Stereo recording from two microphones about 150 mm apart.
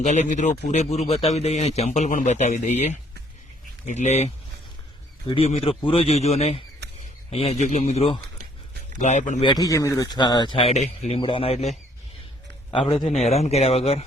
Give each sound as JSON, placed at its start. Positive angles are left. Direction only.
{"t": 0.0, "sound": "a man's voice", "side_deg": 55}
{"t": 5.3, "sound": "a man's voice", "side_deg": 40}
{"t": 9.0, "sound": "a man's voice", "side_deg": 50}
{"t": 9.4, "sound": "a man's voice", "side_deg": 25}